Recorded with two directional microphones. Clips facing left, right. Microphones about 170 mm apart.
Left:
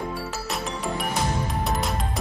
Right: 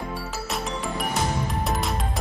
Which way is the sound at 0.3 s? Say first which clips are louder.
Even; centre (ahead or behind).